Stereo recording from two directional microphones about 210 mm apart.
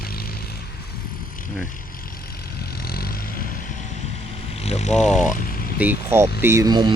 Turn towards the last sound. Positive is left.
turn(degrees=-20)  # may be behind; listen again after turning